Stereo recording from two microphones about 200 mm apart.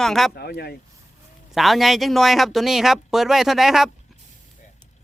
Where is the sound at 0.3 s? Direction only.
55° left (ahead or behind).